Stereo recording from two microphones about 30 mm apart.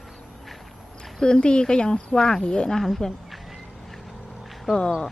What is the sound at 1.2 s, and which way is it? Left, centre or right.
Speech, left.